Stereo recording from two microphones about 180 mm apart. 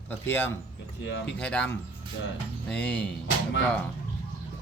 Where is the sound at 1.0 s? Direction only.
80° left.